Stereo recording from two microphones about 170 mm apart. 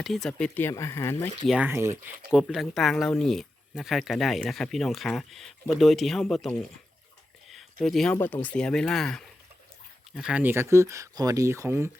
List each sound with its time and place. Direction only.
0.0 s speech: centre (ahead or behind)
1.5 s speech: 10° right (ahead or behind)
2.5 s speech: centre (ahead or behind)
7.5 s a sound: centre (ahead or behind)
8.1 s speech: 10° left (ahead or behind); by 11.9 s 15° right (ahead or behind)